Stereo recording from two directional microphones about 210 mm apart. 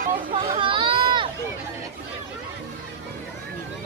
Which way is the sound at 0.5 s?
25° right (ahead or behind).